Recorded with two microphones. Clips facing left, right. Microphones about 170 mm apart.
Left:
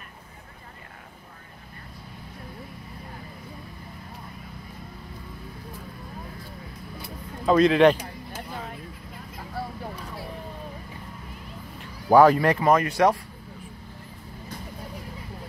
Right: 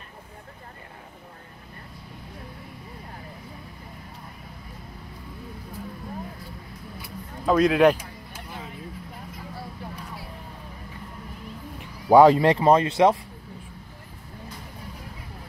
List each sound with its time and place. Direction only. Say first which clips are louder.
7.4 s speech: left 1 dB; 5° right (ahead or behind)
12.1 s speech: right 2 dB; 25° right (ahead or behind)